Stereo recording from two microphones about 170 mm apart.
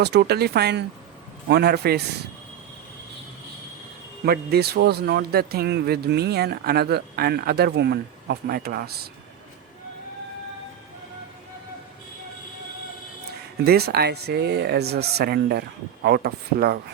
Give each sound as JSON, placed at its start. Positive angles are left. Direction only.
{"t": 0.0, "sound": "speech", "side_deg": -80}
{"t": 4.3, "sound": "speech", "side_deg": -65}
{"t": 13.7, "sound": "speech", "side_deg": -70}